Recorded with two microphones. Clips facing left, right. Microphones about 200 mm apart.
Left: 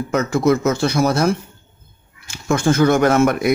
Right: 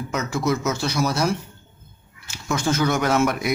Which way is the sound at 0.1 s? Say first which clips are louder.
Left 7 dB; 55° left (ahead or behind).